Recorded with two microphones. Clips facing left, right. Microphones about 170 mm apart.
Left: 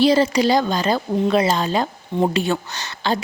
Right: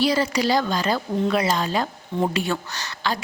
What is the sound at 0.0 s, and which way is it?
A woman's voice, 25° left (ahead or behind).